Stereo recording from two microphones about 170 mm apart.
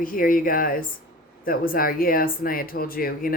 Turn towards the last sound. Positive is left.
turn(degrees=60)  # may be behind; listen again after turning